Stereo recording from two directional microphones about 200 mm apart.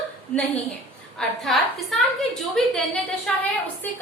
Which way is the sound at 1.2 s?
Centre (ahead or behind).